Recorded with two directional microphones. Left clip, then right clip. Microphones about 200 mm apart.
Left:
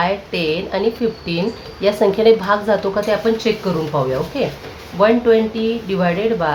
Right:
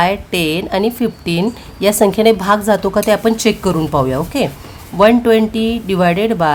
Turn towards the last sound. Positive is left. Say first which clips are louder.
# right 4 dB
turn(degrees=-55)  # may be behind; listen again after turning